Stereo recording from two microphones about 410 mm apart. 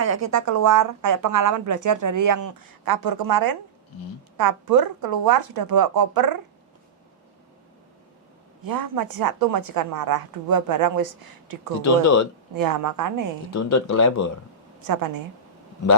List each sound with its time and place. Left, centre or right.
0.0 s a woman's voice: right
8.6 s a woman's voice: right
13.5 s speech: left
14.8 s a woman's voice: right